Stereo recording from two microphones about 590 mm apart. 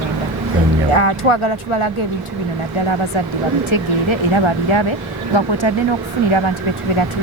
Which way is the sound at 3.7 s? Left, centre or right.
Left.